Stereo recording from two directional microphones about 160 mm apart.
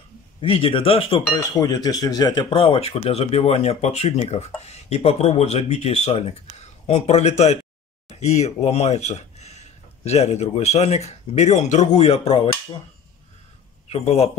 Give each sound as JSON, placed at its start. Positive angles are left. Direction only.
{"t": 0.4, "sound": "speech", "side_deg": 35}
{"t": 1.3, "sound": "a man's voice", "side_deg": 25}
{"t": 13.8, "sound": "a man's voice", "side_deg": 40}